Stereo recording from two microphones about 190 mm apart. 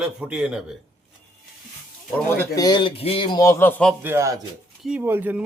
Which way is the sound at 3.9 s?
10° right (ahead or behind).